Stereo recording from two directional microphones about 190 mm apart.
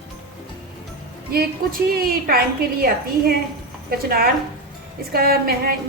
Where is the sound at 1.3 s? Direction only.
50° right (ahead or behind).